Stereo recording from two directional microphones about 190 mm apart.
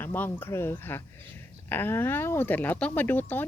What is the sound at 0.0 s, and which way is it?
Speech, 10° left (ahead or behind).